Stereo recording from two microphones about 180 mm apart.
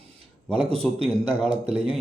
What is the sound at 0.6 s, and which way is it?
Speech, 35° right (ahead or behind).